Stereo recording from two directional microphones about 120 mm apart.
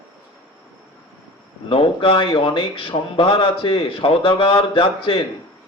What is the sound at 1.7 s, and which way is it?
A man's voice, 50° left (ahead or behind).